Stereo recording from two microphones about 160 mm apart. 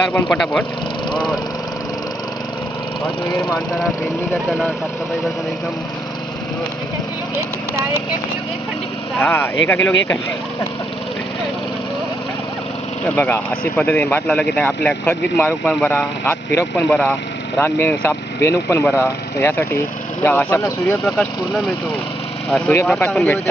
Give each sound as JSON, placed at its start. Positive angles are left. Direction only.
{"t": 0.3, "sound": "speech", "side_deg": 5}
{"t": 3.0, "sound": "speech", "side_deg": 0}
{"t": 7.3, "sound": "speech", "side_deg": -15}
{"t": 9.2, "sound": "speech", "side_deg": 15}
{"t": 13.1, "sound": "speech", "side_deg": 10}
{"t": 21.0, "sound": "speech", "side_deg": 0}
{"t": 22.9, "sound": "speech", "side_deg": 0}